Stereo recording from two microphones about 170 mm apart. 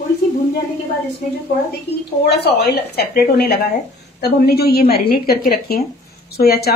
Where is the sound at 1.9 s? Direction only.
75° left (ahead or behind).